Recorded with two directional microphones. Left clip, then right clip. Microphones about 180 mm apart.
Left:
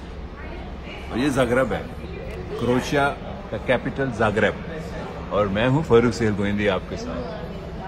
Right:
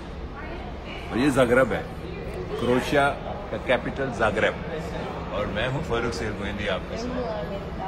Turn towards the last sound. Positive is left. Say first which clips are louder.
# left 6 dB
turn(degrees=40)  # may be behind; listen again after turning